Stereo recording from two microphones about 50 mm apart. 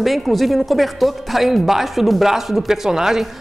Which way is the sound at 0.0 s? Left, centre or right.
Centre.